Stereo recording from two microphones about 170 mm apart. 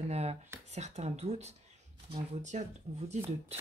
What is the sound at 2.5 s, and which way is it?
Speech, 45° right (ahead or behind).